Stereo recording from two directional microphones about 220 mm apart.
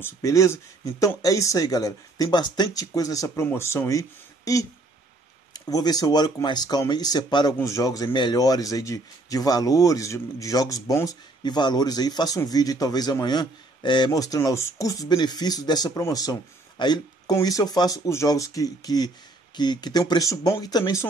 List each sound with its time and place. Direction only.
0.0 s speech: 15° left (ahead or behind)
5.5 s speech: 15° left (ahead or behind)